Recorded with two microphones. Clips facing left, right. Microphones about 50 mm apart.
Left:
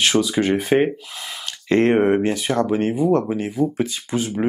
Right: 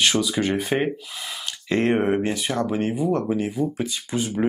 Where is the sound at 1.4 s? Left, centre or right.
Left.